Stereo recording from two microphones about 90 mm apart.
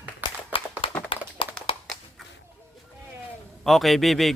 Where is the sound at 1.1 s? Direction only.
75° left (ahead or behind).